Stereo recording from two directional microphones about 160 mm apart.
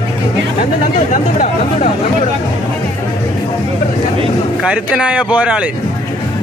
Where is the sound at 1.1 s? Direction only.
45° left (ahead or behind).